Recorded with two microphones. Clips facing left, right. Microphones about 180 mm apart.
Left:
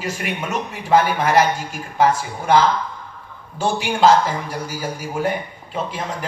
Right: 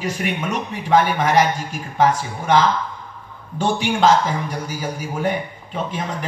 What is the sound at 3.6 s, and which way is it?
A man's voice, 10° left (ahead or behind).